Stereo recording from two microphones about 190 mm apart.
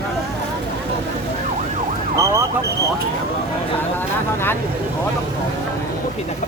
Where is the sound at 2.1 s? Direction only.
15° right (ahead or behind).